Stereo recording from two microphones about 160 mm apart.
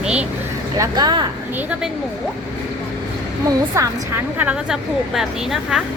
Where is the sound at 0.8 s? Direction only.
25° right (ahead or behind).